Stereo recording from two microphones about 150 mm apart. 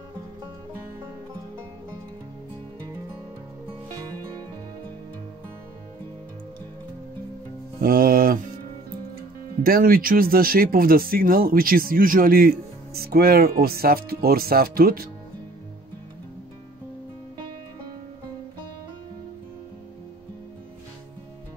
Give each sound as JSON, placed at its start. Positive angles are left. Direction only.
{"t": 7.8, "sound": "music", "side_deg": -75}
{"t": 9.6, "sound": "speech", "side_deg": -75}